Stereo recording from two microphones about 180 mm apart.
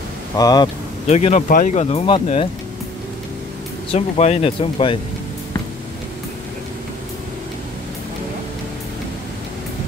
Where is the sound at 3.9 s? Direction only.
35° left (ahead or behind).